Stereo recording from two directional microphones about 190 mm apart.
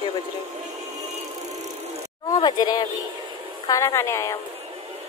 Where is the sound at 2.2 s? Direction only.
20° left (ahead or behind).